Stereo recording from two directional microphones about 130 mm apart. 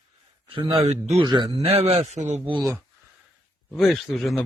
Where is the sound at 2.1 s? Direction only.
60° right (ahead or behind).